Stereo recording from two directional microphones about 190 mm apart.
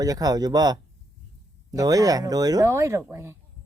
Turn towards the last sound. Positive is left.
turn(degrees=-15)  # may be behind; listen again after turning